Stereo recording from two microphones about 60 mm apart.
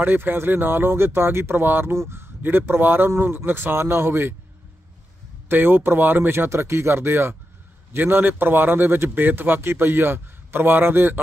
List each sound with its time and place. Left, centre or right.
0.0 s a man's voice: right
5.5 s a man's voice: right